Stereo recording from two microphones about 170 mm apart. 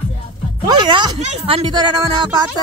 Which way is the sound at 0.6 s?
30° right (ahead or behind).